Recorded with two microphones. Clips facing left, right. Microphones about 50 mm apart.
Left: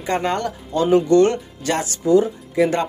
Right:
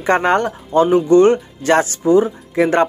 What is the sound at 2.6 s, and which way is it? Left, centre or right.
Speech, right.